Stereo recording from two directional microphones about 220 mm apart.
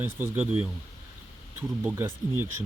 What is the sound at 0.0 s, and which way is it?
Speech, 10° right (ahead or behind).